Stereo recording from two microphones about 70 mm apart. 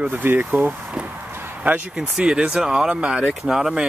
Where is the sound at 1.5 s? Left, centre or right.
Right.